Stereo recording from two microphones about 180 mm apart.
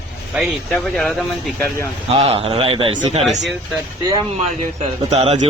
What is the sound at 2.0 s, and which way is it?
A man's voice, 35° right (ahead or behind).